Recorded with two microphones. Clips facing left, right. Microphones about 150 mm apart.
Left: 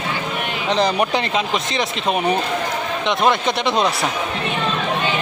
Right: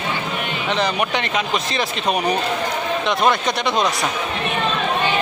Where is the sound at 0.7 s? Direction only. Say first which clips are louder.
Left 3 dB; 35° left (ahead or behind).